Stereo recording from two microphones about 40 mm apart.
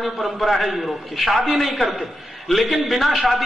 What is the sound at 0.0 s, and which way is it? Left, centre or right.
A man's voice, centre.